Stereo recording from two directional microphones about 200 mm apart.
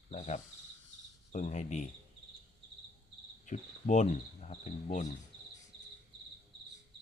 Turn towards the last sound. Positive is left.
turn(degrees=35)  # may be behind; listen again after turning